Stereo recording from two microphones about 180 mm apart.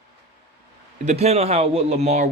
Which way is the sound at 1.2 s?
35° right (ahead or behind).